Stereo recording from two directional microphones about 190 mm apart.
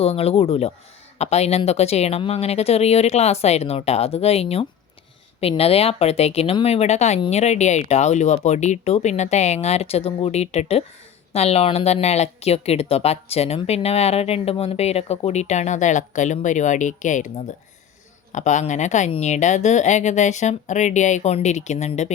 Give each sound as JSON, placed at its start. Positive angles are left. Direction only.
{"t": 0.0, "sound": "speech", "side_deg": 30}